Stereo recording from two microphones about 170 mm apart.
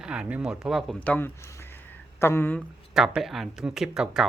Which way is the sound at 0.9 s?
10° left (ahead or behind).